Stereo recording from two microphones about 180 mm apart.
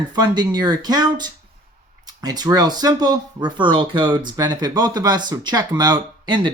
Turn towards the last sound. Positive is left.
turn(degrees=-25)  # may be behind; listen again after turning